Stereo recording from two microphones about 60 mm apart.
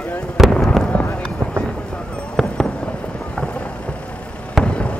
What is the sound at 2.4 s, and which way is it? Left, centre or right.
Fireworks, centre.